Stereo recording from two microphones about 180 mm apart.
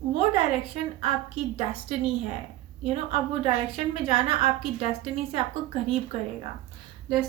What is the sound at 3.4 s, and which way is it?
A woman's voice, 30° right (ahead or behind).